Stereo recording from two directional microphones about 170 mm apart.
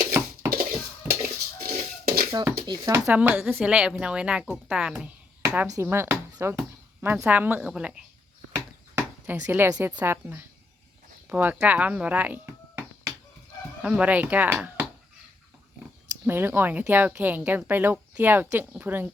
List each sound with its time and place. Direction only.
1.2 s dishes: 60° right (ahead or behind)
2.6 s speech: 20° right (ahead or behind)
3.1 s a woman's voice: 10° right (ahead or behind)
8.5 s chop: 10° right (ahead or behind)
9.5 s speech: 10° right (ahead or behind)